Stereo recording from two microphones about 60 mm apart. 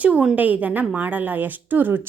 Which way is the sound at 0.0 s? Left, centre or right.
Right.